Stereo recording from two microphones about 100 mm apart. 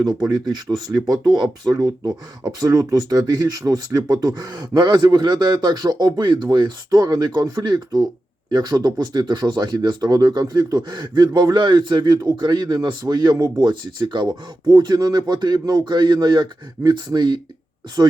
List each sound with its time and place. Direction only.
1.1 s speech: 5° right (ahead or behind)
1.4 s speech: 40° right (ahead or behind)